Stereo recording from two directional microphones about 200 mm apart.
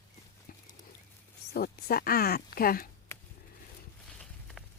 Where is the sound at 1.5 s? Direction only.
50° left (ahead or behind).